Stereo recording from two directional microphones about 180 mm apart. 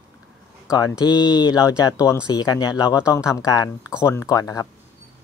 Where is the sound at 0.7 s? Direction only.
20° left (ahead or behind).